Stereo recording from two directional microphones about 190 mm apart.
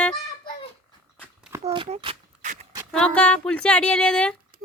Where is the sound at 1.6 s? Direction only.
30° right (ahead or behind).